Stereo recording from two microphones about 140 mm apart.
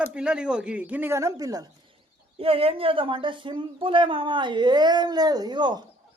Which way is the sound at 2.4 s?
45° right (ahead or behind).